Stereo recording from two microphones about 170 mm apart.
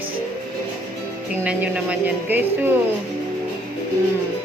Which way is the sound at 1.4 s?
10° right (ahead or behind).